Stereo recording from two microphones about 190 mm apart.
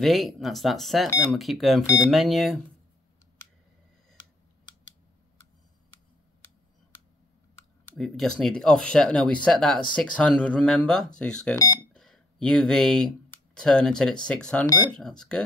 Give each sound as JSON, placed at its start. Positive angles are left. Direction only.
{"t": 0.0, "sound": "speech", "side_deg": 0}
{"t": 7.9, "sound": "speech", "side_deg": 0}
{"t": 11.5, "sound": "speech", "side_deg": 15}
{"t": 11.9, "sound": "a sound", "side_deg": 5}
{"t": 13.6, "sound": "speech", "side_deg": 5}